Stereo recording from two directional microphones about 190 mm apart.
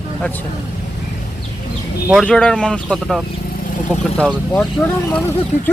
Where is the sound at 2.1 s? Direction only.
Centre (ahead or behind).